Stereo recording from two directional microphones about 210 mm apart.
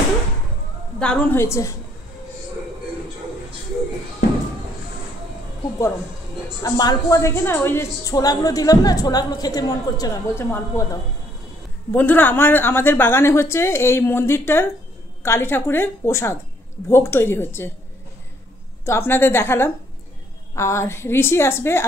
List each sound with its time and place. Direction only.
0.9 s a woman's voice: 5° left (ahead or behind)
6.6 s a woman's voice: 15° left (ahead or behind)
11.9 s a woman's voice: 10° left (ahead or behind)
18.9 s a woman's voice: 10° left (ahead or behind)